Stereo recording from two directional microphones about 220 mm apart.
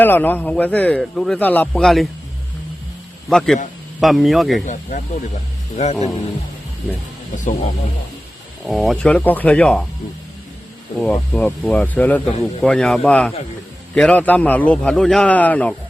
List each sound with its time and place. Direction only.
0.0 s a man's voice: 10° left (ahead or behind)
3.2 s speech: centre (ahead or behind)
4.6 s speech: 35° left (ahead or behind)
8.6 s speech: centre (ahead or behind)
11.0 s speech: 5° left (ahead or behind)